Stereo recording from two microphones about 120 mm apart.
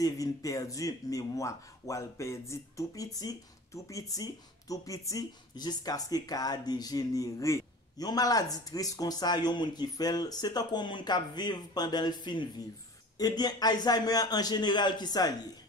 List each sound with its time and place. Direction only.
0.0 s speech: 30° left (ahead or behind)